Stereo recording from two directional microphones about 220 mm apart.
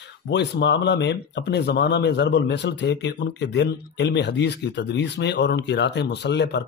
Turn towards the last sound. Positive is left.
turn(degrees=50)  # may be behind; listen again after turning